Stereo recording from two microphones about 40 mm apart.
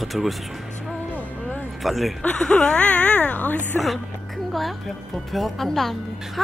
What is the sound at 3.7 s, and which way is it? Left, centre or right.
Speech, left.